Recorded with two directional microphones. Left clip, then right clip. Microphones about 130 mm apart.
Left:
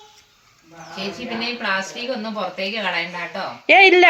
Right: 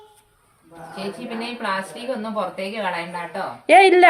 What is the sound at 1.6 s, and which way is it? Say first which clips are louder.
A woman's voice: even; 5° right (ahead or behind).